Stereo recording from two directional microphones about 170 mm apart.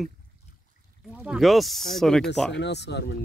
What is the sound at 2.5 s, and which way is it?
Speech, 90° left.